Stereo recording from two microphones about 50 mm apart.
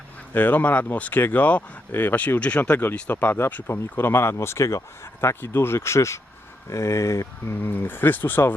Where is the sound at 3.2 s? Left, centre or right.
Left.